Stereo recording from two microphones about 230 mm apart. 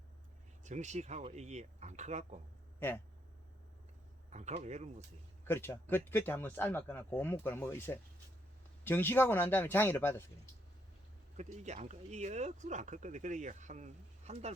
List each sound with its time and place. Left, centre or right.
0.6 s speech: right
4.3 s speech: right
5.5 s speech: centre
11.3 s speech: right